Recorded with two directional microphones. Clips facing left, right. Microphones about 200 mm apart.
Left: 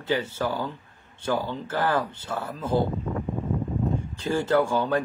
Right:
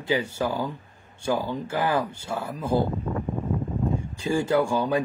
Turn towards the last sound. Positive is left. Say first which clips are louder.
# even
turn(degrees=-10)  # may be behind; listen again after turning